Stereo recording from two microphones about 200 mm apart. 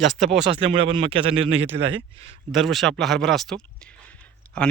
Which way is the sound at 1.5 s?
65° right (ahead or behind).